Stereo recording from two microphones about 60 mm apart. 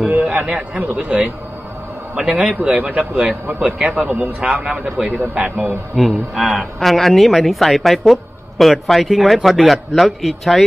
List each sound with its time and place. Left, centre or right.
0.1 s a man's voice: right
4.4 s speech: centre
5.9 s speech: centre